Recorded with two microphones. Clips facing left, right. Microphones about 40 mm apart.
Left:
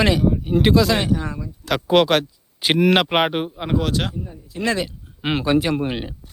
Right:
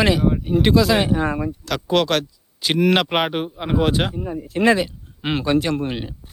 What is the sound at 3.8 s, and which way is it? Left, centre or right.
Speech, right.